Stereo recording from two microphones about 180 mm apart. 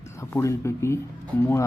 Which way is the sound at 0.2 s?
15° left (ahead or behind).